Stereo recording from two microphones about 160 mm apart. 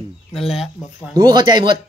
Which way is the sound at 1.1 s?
25° right (ahead or behind).